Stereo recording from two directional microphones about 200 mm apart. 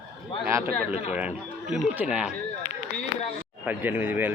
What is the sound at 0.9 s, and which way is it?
Speech, 30° left (ahead or behind).